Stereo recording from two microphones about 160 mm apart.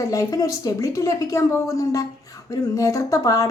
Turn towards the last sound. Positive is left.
turn(degrees=20)  # may be behind; listen again after turning